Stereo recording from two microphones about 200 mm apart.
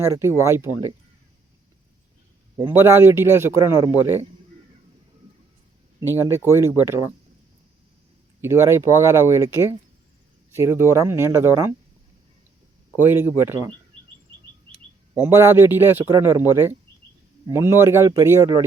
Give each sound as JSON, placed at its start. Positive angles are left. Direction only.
{"t": 0.0, "sound": "a man's voice", "side_deg": -15}
{"t": 2.6, "sound": "a man's voice", "side_deg": -10}
{"t": 6.1, "sound": "a man's voice", "side_deg": -15}
{"t": 8.4, "sound": "a man's voice", "side_deg": -15}
{"t": 13.0, "sound": "a man's voice", "side_deg": -10}
{"t": 15.2, "sound": "a man's voice", "side_deg": -10}